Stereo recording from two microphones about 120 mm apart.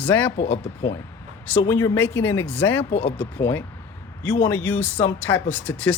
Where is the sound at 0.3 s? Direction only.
60° left (ahead or behind).